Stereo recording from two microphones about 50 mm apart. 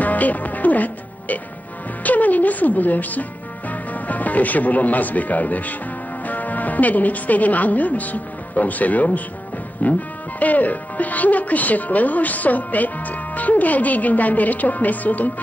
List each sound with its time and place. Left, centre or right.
0.0 s music: left
2.0 s speech: left